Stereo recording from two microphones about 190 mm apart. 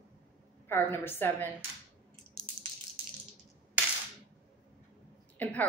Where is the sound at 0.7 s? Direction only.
10° left (ahead or behind).